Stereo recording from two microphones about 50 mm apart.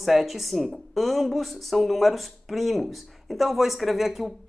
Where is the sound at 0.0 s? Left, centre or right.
Centre.